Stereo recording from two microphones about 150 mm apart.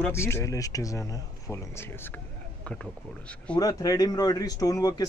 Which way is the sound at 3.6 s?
25° left (ahead or behind).